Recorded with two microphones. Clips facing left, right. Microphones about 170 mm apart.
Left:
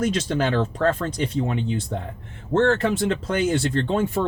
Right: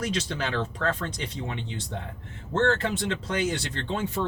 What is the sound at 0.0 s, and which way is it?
Speech, 45° left (ahead or behind).